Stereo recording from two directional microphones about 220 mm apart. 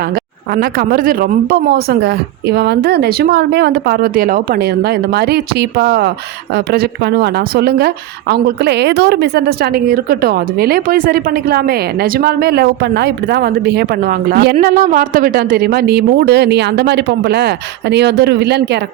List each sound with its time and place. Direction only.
0.5 s a woman's voice: 45° right (ahead or behind)